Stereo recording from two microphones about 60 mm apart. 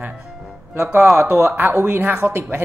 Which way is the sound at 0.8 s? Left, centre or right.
Centre.